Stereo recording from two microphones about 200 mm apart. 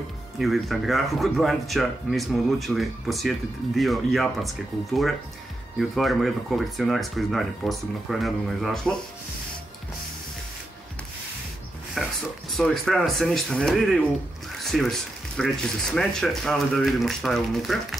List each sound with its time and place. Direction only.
0.4 s speech: centre (ahead or behind)
5.8 s speech: centre (ahead or behind)
12.0 s a sound: centre (ahead or behind)
12.4 s speech: centre (ahead or behind)